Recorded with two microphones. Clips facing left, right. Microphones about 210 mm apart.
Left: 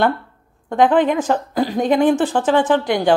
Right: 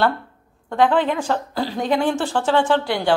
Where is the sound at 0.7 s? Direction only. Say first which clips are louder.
Left 3 dB; 20° left (ahead or behind).